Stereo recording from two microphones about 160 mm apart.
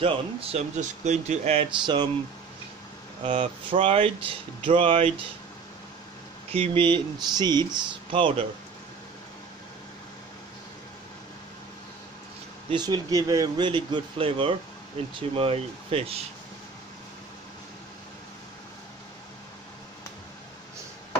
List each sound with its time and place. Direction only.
0.0 s speech: 35° right (ahead or behind)
3.2 s speech: 35° right (ahead or behind)
6.5 s speech: 35° right (ahead or behind)
12.6 s speech: 30° right (ahead or behind)